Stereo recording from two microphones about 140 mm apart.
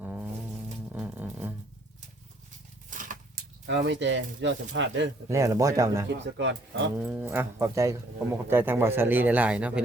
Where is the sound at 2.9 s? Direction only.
70° right (ahead or behind).